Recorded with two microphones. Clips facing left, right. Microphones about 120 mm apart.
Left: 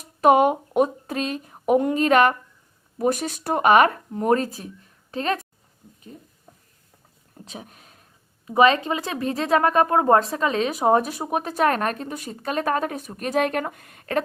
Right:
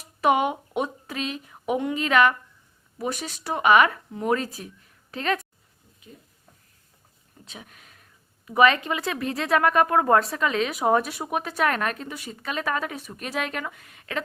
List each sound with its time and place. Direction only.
0.2 s a woman's voice: 45° left (ahead or behind)
7.3 s a sound: 40° left (ahead or behind)
8.4 s a woman's voice: 30° left (ahead or behind); by 14.2 s 45° left (ahead or behind)